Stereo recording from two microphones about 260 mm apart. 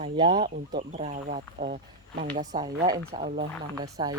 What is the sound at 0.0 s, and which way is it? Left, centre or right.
Speech, centre.